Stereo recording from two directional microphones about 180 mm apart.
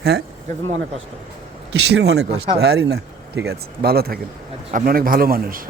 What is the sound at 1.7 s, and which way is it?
A man's voice, 65° right (ahead or behind).